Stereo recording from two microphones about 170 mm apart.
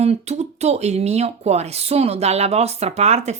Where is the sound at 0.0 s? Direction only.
40° right (ahead or behind).